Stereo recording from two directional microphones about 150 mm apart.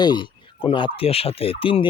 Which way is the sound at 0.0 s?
30° left (ahead or behind).